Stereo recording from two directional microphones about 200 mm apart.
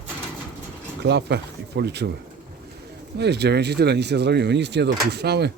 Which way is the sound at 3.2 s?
55° right (ahead or behind).